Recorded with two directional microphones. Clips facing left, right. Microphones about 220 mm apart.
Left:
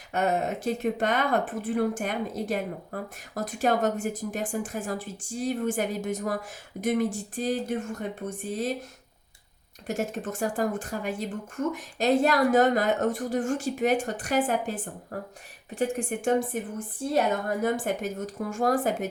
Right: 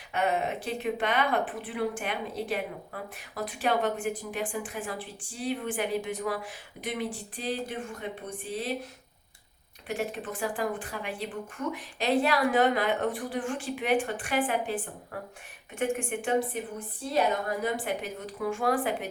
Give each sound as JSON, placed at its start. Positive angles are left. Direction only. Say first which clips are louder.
{"t": 0.1, "sound": "speech", "louder": "left 2 dB", "side_deg": 45}
{"t": 9.8, "sound": "a woman's voice", "louder": "left 3 dB", "side_deg": 45}